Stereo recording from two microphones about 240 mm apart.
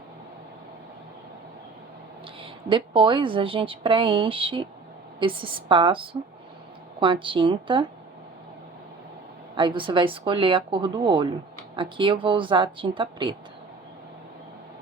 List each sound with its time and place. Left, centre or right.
2.4 s a woman's voice: right
9.6 s a woman's voice: centre